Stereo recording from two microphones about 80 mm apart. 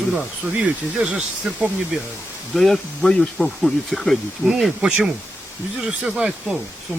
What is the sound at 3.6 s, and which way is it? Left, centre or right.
Speech, centre.